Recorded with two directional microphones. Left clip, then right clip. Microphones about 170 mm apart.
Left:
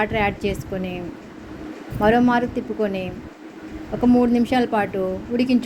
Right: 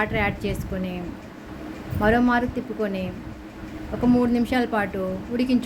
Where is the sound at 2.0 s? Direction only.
20° left (ahead or behind).